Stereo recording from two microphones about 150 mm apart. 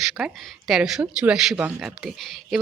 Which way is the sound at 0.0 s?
Centre (ahead or behind).